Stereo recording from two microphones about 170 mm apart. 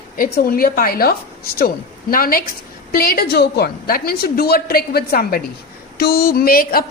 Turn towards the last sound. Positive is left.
turn(degrees=60)  # may be behind; listen again after turning